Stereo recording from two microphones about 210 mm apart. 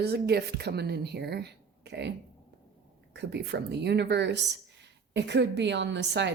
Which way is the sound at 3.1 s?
55° right (ahead or behind).